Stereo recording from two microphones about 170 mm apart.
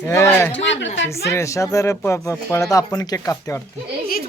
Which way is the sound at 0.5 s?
90° left.